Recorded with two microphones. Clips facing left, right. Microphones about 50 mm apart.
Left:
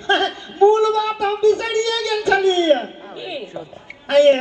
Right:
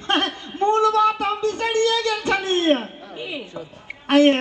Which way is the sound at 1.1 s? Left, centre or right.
Right.